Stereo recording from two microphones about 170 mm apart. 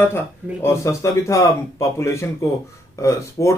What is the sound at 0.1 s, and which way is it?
A man's voice, 15° left (ahead or behind).